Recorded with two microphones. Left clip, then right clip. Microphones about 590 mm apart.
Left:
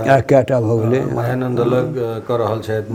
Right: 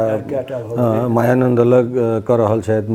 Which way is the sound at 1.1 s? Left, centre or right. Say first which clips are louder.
Right 6 dB; right.